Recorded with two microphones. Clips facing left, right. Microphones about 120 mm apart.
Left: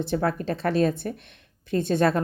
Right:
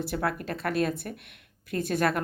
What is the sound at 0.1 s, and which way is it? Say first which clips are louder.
A woman's voice: left 5 dB; 30° left (ahead or behind).